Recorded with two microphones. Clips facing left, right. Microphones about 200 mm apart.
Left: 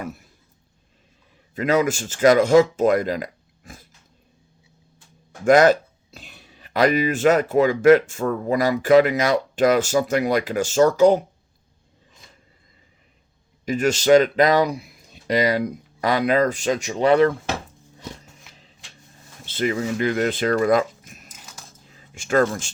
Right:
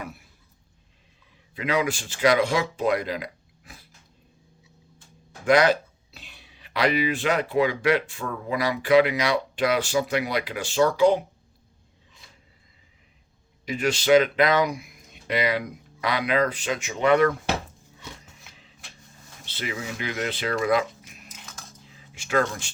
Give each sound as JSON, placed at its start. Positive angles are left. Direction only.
{"t": 1.5, "sound": "speech", "side_deg": 45}
{"t": 5.5, "sound": "speech", "side_deg": 45}
{"t": 13.7, "sound": "speech", "side_deg": 45}
{"t": 19.5, "sound": "speech", "side_deg": 50}